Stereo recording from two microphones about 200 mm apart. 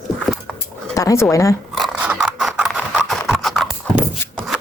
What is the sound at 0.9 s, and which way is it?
Speech, 15° left (ahead or behind).